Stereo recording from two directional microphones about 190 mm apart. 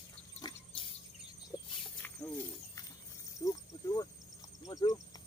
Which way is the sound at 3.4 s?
20° left (ahead or behind).